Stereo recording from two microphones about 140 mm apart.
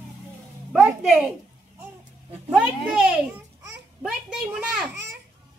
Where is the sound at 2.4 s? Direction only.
5° right (ahead or behind).